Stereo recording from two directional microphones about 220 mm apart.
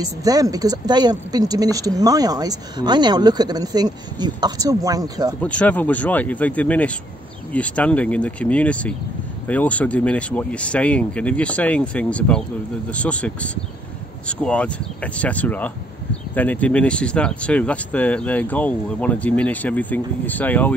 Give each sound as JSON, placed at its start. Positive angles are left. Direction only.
{"t": 0.2, "sound": "a woman's voice", "side_deg": -15}
{"t": 5.4, "sound": "speech", "side_deg": 5}